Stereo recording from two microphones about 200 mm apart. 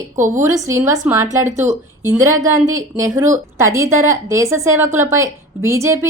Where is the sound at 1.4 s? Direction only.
35° right (ahead or behind).